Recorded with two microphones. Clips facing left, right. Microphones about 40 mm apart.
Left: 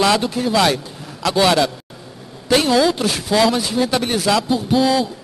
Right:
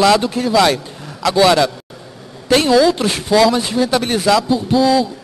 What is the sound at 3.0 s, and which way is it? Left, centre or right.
Speech, centre.